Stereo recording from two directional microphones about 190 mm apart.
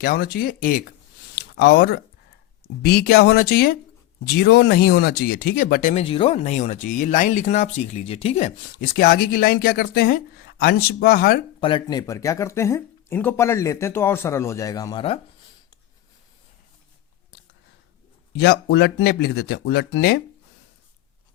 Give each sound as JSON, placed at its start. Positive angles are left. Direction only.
{"t": 0.0, "sound": "speech", "side_deg": 55}
{"t": 1.4, "sound": "a sound", "side_deg": 60}
{"t": 2.8, "sound": "speech", "side_deg": 55}
{"t": 5.9, "sound": "speech", "side_deg": 30}
{"t": 8.8, "sound": "speech", "side_deg": 50}
{"t": 11.6, "sound": "speech", "side_deg": 25}
{"t": 18.3, "sound": "speech", "side_deg": 60}